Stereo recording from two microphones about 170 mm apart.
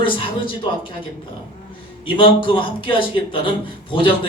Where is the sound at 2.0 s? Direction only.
30° left (ahead or behind).